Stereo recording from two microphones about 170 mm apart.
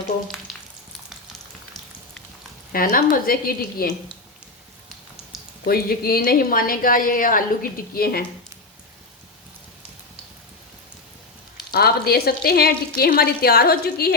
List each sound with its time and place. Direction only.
2.7 s a woman's voice: 55° left (ahead or behind)
5.6 s a woman's voice: 65° left (ahead or behind)
11.7 s a woman's voice: 65° left (ahead or behind)